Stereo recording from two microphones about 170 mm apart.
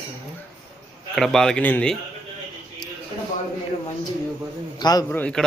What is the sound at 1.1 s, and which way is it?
Speech, centre (ahead or behind).